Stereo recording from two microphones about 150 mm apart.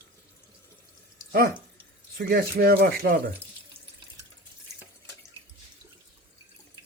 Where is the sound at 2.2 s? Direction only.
90° right.